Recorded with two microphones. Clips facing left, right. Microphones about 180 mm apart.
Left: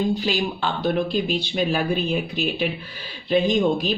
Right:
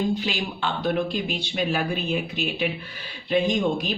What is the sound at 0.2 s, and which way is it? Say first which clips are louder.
Speech: left 4 dB; 35° left (ahead or behind).